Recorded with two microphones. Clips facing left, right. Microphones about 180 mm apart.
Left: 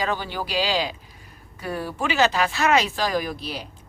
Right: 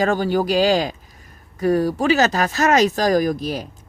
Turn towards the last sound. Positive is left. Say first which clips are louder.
# right 8 dB
turn(degrees=-45)  # may be behind; listen again after turning